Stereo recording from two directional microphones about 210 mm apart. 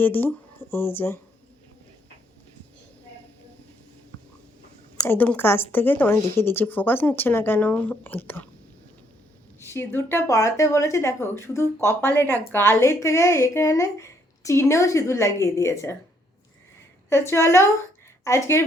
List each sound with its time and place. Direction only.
0.0 s speech: 10° left (ahead or behind)
4.9 s speech: 10° left (ahead or behind)
9.6 s speech: 10° left (ahead or behind)
17.1 s speech: 10° left (ahead or behind)